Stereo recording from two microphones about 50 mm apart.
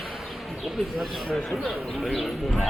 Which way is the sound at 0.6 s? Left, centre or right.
Centre.